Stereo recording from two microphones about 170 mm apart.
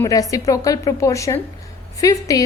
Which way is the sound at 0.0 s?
20° left (ahead or behind).